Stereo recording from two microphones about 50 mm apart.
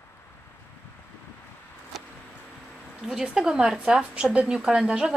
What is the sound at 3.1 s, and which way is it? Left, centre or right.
Speech, centre.